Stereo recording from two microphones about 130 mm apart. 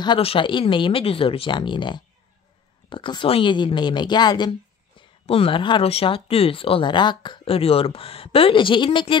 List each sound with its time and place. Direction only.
0.2 s speech: 45° left (ahead or behind)
5.2 s speech: 45° left (ahead or behind)